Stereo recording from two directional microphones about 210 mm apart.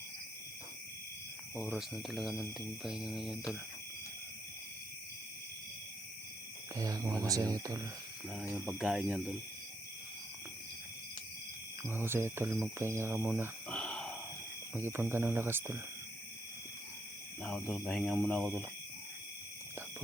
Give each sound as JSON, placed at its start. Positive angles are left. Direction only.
{"t": 1.5, "sound": "speech", "side_deg": 0}
{"t": 6.7, "sound": "speech", "side_deg": -15}
{"t": 8.3, "sound": "speech", "side_deg": -5}
{"t": 11.8, "sound": "speech", "side_deg": -10}
{"t": 13.7, "sound": "a sound", "side_deg": 5}
{"t": 14.7, "sound": "speech", "side_deg": -10}
{"t": 17.4, "sound": "speech", "side_deg": 5}